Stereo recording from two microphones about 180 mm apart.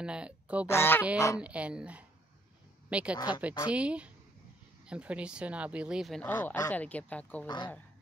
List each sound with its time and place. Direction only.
0.0 s speech: 5° right (ahead or behind)
0.7 s speech: 15° left (ahead or behind)
1.4 s a woman's voice: 5° right (ahead or behind)
6.3 s speech: 20° left (ahead or behind)
6.7 s speech: 10° left (ahead or behind)
7.4 s speech: 25° left (ahead or behind)